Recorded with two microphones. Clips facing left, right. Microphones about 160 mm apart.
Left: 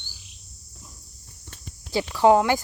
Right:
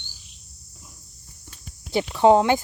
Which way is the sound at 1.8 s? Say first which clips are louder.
Right 1 dB; 20° right (ahead or behind).